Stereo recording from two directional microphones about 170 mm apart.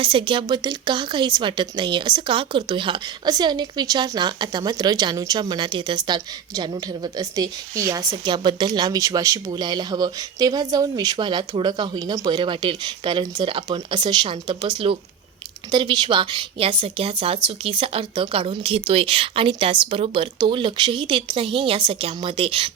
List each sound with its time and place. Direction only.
0.0 s a woman's voice: 30° right (ahead or behind)